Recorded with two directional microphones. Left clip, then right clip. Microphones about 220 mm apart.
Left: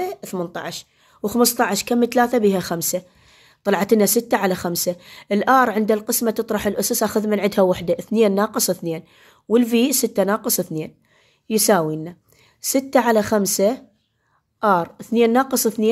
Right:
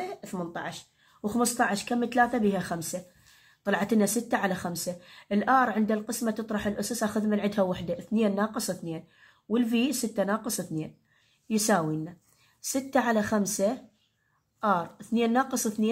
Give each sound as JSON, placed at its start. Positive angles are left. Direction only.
{"t": 0.0, "sound": "speech", "side_deg": 55}